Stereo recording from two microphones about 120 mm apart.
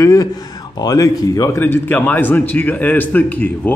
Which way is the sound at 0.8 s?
30° left (ahead or behind).